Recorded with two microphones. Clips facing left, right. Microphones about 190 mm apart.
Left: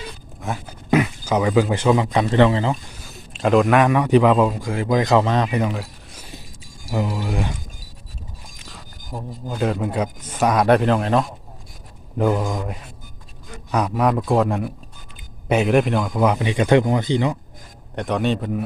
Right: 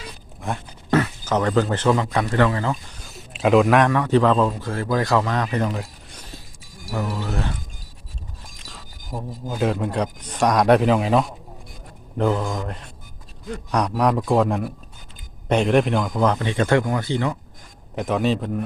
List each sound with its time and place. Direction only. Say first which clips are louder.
0.4 s a man's voice: even; centre (ahead or behind)
0.9 s speech: left 2 dB; 15° left (ahead or behind)
3.0 s a sound: right 3 dB; centre (ahead or behind)
3.8 s a man's voice: left 2 dB; 15° left (ahead or behind)
5.5 s speech: left 1 dB; 5° left (ahead or behind)
6.9 s a man's voice: left 2 dB; 15° left (ahead or behind)
8.5 s a man's voice: left 1 dB; centre (ahead or behind)
12.1 s a man's voice: left 1 dB; 10° left (ahead or behind)
17.9 s a man's voice: even; centre (ahead or behind)